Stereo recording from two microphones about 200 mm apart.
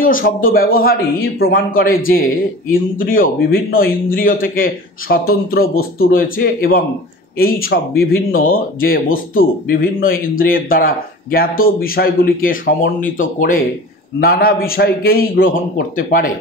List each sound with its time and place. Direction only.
0.0 s speech: 45° left (ahead or behind)